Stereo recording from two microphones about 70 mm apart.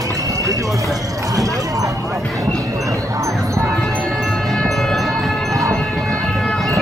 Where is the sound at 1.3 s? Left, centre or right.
Right.